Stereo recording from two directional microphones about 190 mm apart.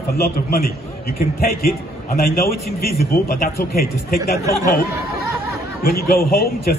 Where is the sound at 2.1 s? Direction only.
50° left (ahead or behind).